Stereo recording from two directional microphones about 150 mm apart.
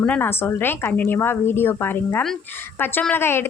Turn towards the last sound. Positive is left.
turn(degrees=15)  # may be behind; listen again after turning